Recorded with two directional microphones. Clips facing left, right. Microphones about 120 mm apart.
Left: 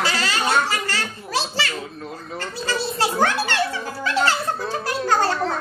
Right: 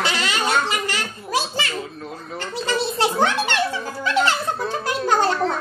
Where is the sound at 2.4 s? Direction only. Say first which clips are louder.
Right 3 dB; 20° right (ahead or behind).